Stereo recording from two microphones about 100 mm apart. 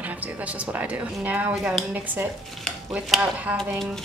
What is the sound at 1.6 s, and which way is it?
Speech, 5° right (ahead or behind).